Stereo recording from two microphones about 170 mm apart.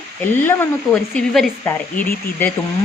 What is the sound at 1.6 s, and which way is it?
Speech, 15° left (ahead or behind).